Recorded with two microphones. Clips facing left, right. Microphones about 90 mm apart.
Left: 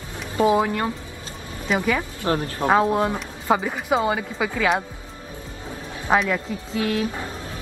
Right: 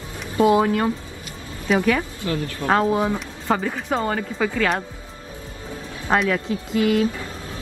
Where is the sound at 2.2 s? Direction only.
35° left (ahead or behind).